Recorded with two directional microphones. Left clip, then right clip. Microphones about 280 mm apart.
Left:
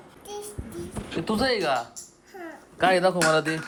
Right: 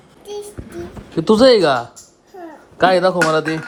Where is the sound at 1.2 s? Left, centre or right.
Right.